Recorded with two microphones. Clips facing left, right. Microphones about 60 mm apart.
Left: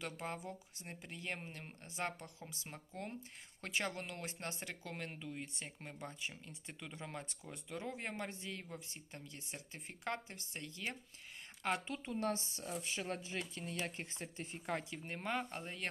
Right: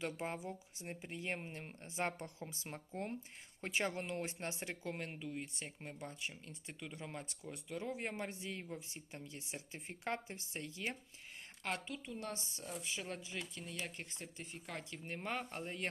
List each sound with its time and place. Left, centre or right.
0.0 s speech: centre
11.9 s speech: left
14.8 s speech: centre